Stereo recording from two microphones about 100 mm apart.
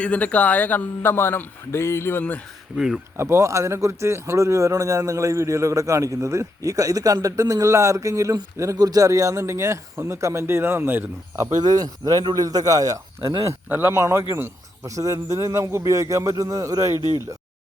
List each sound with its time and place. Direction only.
0.0 s a man's voice: 15° left (ahead or behind)
2.7 s speech: 5° right (ahead or behind)
3.2 s speech: 25° right (ahead or behind)
11.6 s speech: 40° right (ahead or behind)
13.7 s speech: 20° right (ahead or behind)
17.0 s speech: 45° left (ahead or behind)